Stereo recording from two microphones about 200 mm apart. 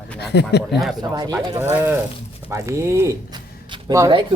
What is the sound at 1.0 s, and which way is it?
Speech, 20° right (ahead or behind).